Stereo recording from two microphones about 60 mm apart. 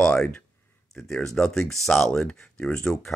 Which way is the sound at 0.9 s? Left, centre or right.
Centre.